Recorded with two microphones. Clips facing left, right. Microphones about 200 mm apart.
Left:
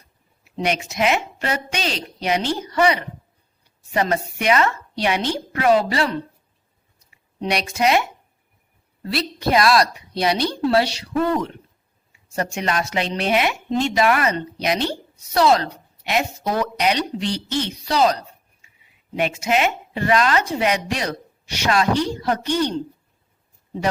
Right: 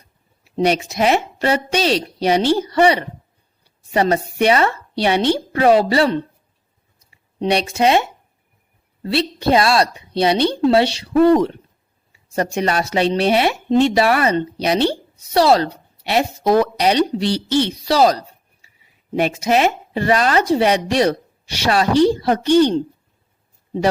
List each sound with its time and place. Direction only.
0.4 s a woman's voice: 35° right (ahead or behind)
9.1 s a woman's voice: 30° right (ahead or behind)